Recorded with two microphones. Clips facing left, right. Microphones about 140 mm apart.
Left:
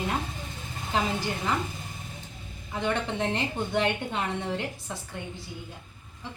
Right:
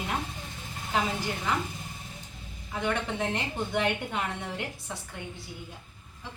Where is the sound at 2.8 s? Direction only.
25° left (ahead or behind).